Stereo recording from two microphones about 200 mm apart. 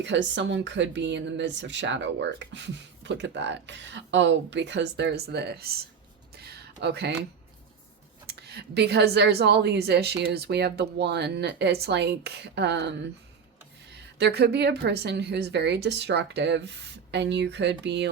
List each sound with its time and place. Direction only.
0.0 s speech: 65° right (ahead or behind)
6.3 s a sound: 55° right (ahead or behind)
8.3 s speech: 55° right (ahead or behind)